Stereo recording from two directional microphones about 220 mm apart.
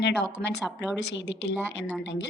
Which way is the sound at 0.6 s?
5° right (ahead or behind).